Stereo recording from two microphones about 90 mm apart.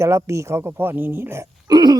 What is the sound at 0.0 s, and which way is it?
Speech, 35° right (ahead or behind).